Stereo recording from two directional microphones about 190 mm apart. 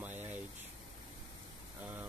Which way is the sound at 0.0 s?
10° right (ahead or behind).